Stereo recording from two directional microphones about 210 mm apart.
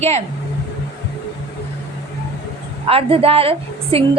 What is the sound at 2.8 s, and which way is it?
A woman's voice, 25° right (ahead or behind).